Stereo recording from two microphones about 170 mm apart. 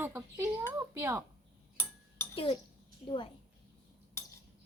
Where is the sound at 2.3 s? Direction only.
30° left (ahead or behind).